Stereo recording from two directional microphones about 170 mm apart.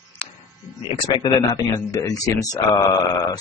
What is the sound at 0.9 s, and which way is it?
Speech, 25° left (ahead or behind).